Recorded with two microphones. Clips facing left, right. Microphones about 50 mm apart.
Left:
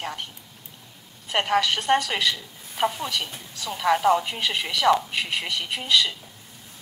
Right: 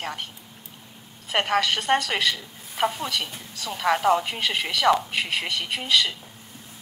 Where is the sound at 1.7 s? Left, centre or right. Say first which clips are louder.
Even; centre.